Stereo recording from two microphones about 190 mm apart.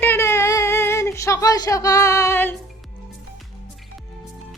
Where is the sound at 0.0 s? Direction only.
10° left (ahead or behind).